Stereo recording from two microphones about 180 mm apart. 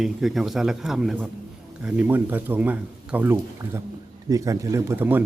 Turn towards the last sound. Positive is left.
turn(degrees=-10)  # may be behind; listen again after turning